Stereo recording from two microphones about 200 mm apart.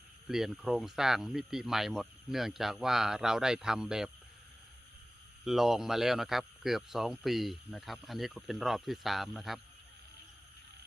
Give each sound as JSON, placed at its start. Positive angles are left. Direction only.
{"t": 0.3, "sound": "speech", "side_deg": 0}
{"t": 5.5, "sound": "speech", "side_deg": 0}